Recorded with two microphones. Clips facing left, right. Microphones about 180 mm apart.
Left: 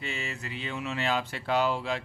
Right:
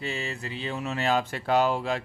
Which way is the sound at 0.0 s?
35° right (ahead or behind).